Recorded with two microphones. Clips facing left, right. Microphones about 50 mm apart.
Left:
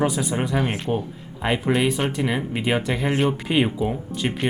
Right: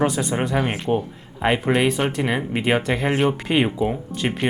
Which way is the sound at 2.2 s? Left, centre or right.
Centre.